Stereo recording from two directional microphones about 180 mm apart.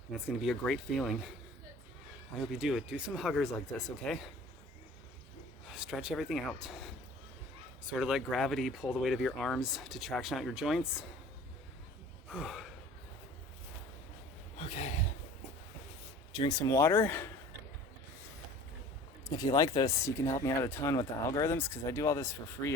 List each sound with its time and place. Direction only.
0.3 s speech: centre (ahead or behind)
2.5 s speech: centre (ahead or behind)
5.6 s speech: 5° right (ahead or behind)
12.3 s gasp: 5° right (ahead or behind)
14.6 s a sound: 35° left (ahead or behind)
16.3 s speech: 25° left (ahead or behind)
19.3 s speech: 20° left (ahead or behind)